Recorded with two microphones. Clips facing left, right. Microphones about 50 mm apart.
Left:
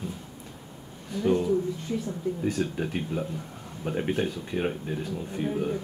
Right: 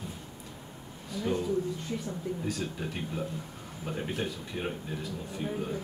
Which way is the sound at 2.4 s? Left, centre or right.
Left.